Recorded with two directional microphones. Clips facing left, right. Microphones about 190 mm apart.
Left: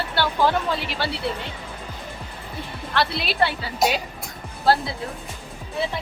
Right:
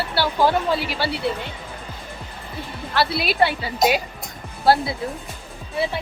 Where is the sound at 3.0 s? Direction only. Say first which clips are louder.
Right 3 dB; 10° right (ahead or behind).